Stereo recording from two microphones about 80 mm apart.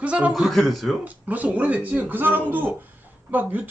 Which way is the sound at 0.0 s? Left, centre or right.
Centre.